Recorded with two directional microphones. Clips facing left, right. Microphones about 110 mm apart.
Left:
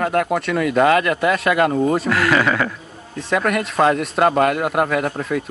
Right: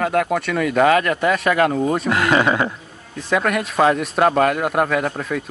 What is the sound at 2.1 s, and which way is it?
Speech, 20° right (ahead or behind).